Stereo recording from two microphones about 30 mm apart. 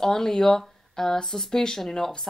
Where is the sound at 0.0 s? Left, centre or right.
Centre.